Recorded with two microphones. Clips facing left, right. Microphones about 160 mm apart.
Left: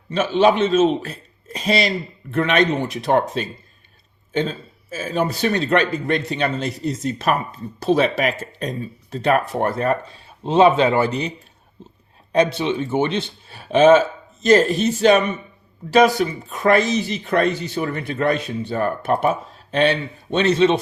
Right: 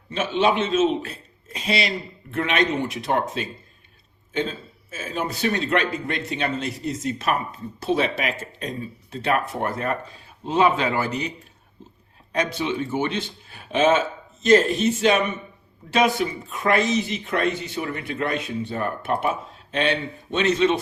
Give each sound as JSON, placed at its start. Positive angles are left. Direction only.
{"t": 0.1, "sound": "speech", "side_deg": 40}
{"t": 4.9, "sound": "speech", "side_deg": 35}
{"t": 11.8, "sound": "a sound", "side_deg": 25}
{"t": 12.3, "sound": "speech", "side_deg": 25}
{"t": 20.3, "sound": "speech", "side_deg": 30}